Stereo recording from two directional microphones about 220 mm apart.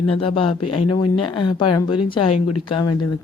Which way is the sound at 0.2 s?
25° left (ahead or behind).